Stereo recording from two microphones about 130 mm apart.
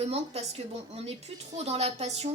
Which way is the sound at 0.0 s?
50° right (ahead or behind).